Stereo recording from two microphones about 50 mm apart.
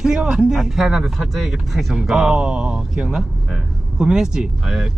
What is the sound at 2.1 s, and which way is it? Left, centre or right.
Speech, centre.